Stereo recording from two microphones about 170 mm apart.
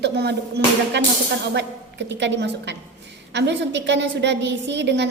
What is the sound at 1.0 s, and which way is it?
A woman's voice, 90° right.